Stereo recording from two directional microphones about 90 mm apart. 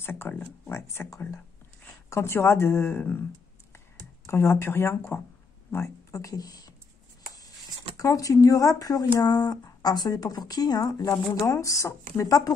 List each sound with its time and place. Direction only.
0.0 s speech: 20° left (ahead or behind)
4.3 s speech: 25° left (ahead or behind); by 6.7 s 45° left (ahead or behind)
8.0 s speech: 40° left (ahead or behind)